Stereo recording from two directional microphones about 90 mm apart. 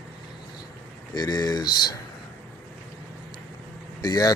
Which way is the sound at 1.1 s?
45° left (ahead or behind).